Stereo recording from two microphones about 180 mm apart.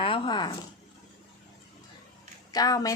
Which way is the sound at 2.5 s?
20° left (ahead or behind).